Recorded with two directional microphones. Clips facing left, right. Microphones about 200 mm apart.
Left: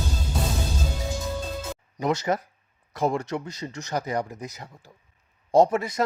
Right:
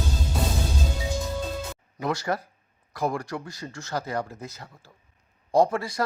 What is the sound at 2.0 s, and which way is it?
Speech, 20° left (ahead or behind).